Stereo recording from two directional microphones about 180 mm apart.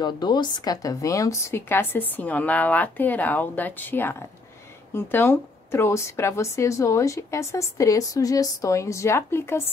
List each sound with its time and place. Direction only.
0.0 s a woman's voice: 25° left (ahead or behind)